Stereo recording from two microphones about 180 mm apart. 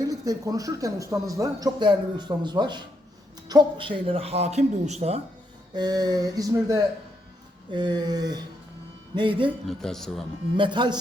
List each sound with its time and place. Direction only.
0.0 s speech: 20° right (ahead or behind); by 5.2 s 35° right (ahead or behind)
5.7 s speech: 20° right (ahead or behind)
9.5 s speech: centre (ahead or behind)
10.6 s speech: 25° right (ahead or behind)